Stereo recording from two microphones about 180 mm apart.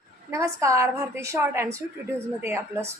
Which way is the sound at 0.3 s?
15° right (ahead or behind).